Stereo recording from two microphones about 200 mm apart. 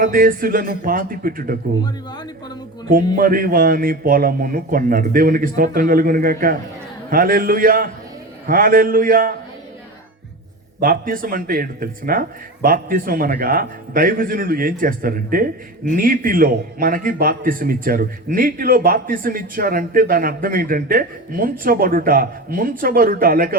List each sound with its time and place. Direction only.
0.0 s a man's voice: 45° right (ahead or behind)
2.9 s a man's voice: 45° right (ahead or behind)
10.8 s a man's voice: 45° right (ahead or behind)